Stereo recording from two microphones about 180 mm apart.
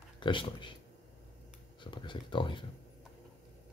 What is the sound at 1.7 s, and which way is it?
Speech, 25° left (ahead or behind).